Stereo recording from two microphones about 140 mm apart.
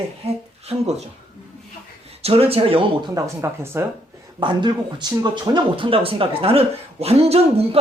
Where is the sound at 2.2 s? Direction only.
45° right (ahead or behind).